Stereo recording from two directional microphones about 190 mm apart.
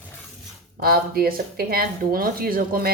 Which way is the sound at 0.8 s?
50° right (ahead or behind).